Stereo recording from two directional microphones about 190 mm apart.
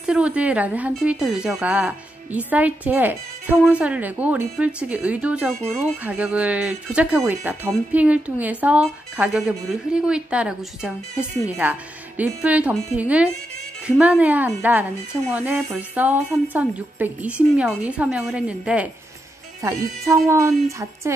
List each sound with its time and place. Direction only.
0.0 s speech: 5° right (ahead or behind)